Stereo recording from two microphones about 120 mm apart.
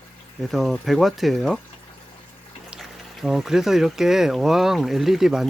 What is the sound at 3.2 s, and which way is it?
Speech, centre (ahead or behind).